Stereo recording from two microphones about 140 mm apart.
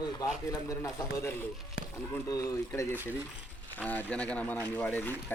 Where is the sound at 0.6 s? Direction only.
20° left (ahead or behind).